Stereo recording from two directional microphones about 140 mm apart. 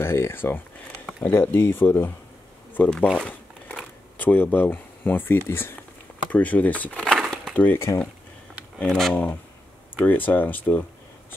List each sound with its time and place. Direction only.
0.0 s speech: 15° left (ahead or behind)
3.3 s a sound: 10° left (ahead or behind)
5.5 s speech: 15° left (ahead or behind)
7.2 s a sound: centre (ahead or behind)
7.5 s speech: 15° left (ahead or behind)
8.7 s speech: 5° left (ahead or behind)